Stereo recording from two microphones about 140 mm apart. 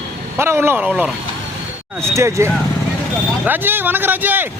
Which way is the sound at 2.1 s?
20° right (ahead or behind).